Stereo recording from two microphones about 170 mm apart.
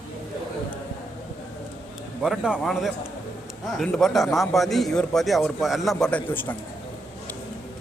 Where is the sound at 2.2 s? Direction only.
5° right (ahead or behind); by 6.5 s 10° left (ahead or behind).